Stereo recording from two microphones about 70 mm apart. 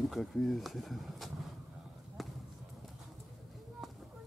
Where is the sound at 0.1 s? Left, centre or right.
Centre.